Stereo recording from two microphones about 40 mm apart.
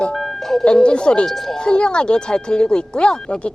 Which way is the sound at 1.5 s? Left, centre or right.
Left.